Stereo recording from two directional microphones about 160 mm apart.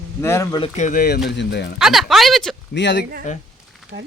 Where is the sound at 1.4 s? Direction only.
90° left.